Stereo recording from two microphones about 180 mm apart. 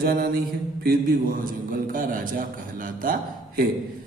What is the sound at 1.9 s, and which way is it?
A man's voice, 50° right (ahead or behind).